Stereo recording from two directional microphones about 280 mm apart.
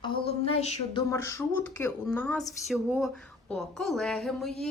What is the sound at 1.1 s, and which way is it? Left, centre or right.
Speech, centre.